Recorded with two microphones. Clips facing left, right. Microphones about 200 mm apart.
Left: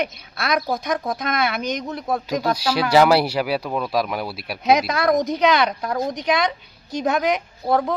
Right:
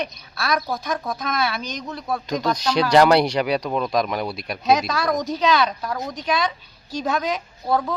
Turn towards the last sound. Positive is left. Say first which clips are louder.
# left 2 dB
turn(degrees=20)  # may be behind; listen again after turning